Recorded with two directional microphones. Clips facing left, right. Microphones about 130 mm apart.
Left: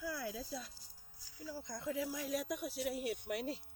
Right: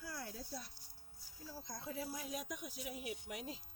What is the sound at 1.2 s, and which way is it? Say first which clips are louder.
Speech: left 5 dB; 90° left.